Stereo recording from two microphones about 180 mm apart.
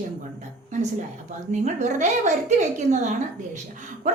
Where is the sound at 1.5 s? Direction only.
40° right (ahead or behind).